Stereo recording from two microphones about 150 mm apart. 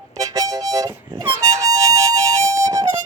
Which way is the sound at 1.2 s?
20° right (ahead or behind).